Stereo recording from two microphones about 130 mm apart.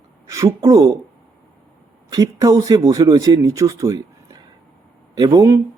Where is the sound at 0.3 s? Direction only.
25° right (ahead or behind).